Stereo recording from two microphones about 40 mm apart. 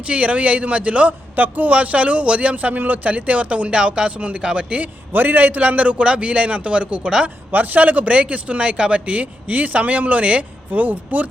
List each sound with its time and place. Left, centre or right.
0.0 s a man's voice: right
1.4 s a man's voice: right
5.1 s a man's voice: right
7.5 s a man's voice: right
10.7 s speech: right